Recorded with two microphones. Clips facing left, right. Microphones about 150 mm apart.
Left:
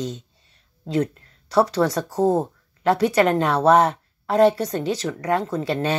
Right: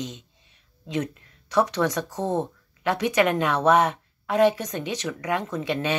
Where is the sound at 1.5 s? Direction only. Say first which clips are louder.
Left 4 dB; 35° left (ahead or behind).